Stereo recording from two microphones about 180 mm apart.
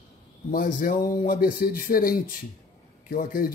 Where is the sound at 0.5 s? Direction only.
50° left (ahead or behind).